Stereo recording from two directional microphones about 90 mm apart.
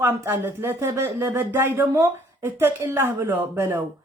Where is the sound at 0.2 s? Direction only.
25° right (ahead or behind).